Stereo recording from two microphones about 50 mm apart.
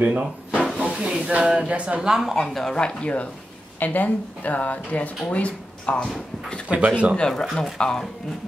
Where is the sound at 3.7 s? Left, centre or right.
Left.